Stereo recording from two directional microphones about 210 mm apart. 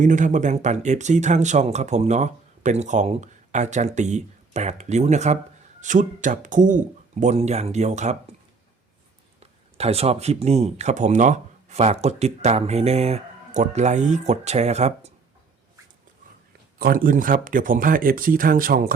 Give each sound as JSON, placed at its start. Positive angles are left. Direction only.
{"t": 0.0, "sound": "speech", "side_deg": -35}
{"t": 9.7, "sound": "speech", "side_deg": -30}
{"t": 16.7, "sound": "speech", "side_deg": -45}